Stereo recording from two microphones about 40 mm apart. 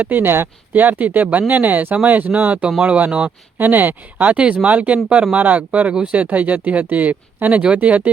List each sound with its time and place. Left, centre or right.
0.0 s speech: right
0.7 s speech: right
3.6 s speech: right
4.3 s speech: right